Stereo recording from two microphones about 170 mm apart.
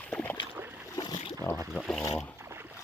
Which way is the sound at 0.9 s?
25° left (ahead or behind).